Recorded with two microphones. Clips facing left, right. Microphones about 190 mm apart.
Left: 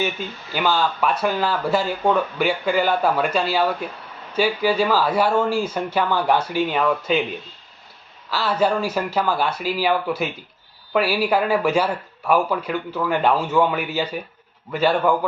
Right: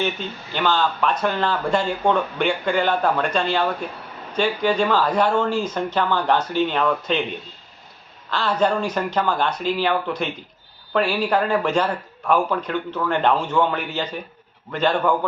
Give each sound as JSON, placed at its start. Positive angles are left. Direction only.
{"t": 0.0, "sound": "speech", "side_deg": 10}
{"t": 8.3, "sound": "speech", "side_deg": 5}